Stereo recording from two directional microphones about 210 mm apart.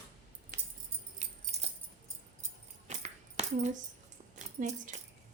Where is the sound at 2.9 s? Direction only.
30° right (ahead or behind).